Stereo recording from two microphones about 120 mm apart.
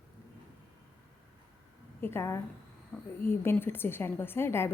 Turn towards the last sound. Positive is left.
turn(degrees=20)  # may be behind; listen again after turning